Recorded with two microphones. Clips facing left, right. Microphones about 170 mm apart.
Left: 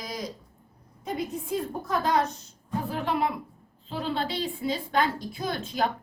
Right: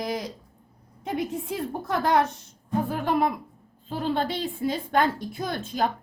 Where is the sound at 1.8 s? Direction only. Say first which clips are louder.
Right 3 dB; 65° right (ahead or behind).